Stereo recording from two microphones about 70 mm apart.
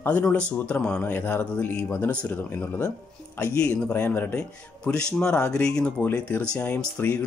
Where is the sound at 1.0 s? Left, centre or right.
Left.